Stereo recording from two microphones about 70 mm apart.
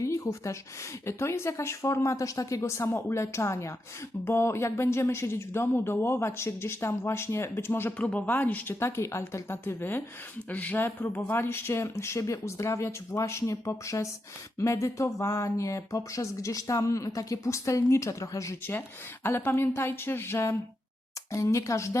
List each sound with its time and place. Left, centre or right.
0.0 s a sound: left
1.0 s speech: left
8.8 s speech: left
18.6 s speech: left
21.3 s speech: left